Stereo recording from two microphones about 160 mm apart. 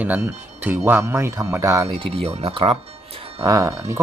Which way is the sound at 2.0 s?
35° right (ahead or behind).